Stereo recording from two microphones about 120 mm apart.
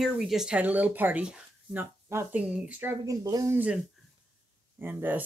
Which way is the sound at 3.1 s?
30° right (ahead or behind).